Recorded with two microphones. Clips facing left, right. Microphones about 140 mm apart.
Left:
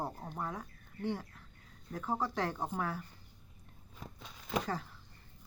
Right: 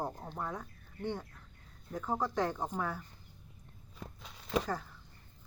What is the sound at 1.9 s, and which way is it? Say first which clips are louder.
Speech: right 2 dB; 5° left (ahead or behind).